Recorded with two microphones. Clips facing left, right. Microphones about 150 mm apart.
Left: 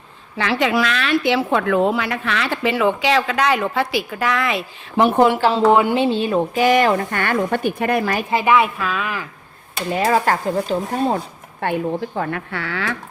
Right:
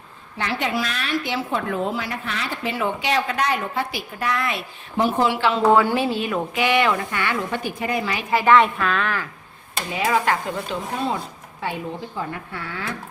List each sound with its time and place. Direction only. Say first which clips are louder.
0.3 s a woman's voice: left 6 dB; 90° left; by 5.4 s 60° left (ahead or behind)
5.4 s speech: left 4 dB; 35° left (ahead or behind)
5.6 s speech: left 2 dB; 20° left (ahead or behind); by 8.2 s 55° left (ahead or behind)
8.3 s a woman's voice: right 2 dB; 15° left (ahead or behind)
9.9 s speech: left 4 dB; 40° left (ahead or behind)
11.6 s a woman's voice: left 7 dB; 60° left (ahead or behind); by 13.0 s 90° left